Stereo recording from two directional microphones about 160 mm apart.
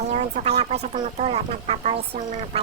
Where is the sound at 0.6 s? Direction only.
45° right (ahead or behind).